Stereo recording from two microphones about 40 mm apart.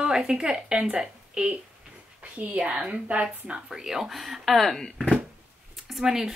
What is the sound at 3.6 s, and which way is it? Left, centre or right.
Speech, centre.